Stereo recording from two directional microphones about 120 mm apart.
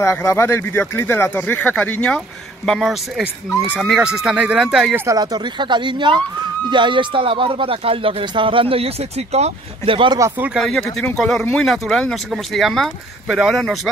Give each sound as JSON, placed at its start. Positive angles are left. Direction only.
{"t": 0.0, "sound": "speech", "side_deg": 25}
{"t": 4.9, "sound": "speech", "side_deg": -25}
{"t": 5.2, "sound": "speech", "side_deg": -40}
{"t": 10.6, "sound": "speech", "side_deg": 5}